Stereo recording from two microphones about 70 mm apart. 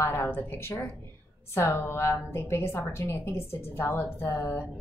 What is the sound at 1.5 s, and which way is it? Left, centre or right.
A woman's voice, left.